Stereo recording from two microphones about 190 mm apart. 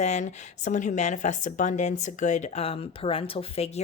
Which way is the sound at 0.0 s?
40° left (ahead or behind).